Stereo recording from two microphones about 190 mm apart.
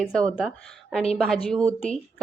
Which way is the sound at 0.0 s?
5° left (ahead or behind).